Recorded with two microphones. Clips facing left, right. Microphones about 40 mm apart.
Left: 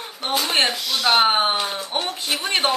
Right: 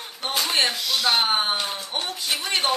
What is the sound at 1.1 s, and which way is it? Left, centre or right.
Speech, left.